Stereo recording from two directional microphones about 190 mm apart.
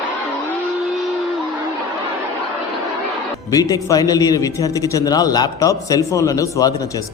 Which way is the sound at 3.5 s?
20° left (ahead or behind).